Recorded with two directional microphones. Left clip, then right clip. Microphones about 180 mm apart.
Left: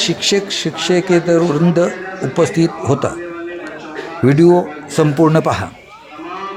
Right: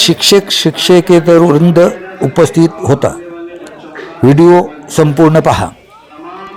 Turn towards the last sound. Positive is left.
turn(degrees=-20)  # may be behind; listen again after turning